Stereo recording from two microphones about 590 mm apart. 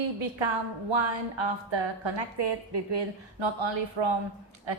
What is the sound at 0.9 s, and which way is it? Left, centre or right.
Speech, right.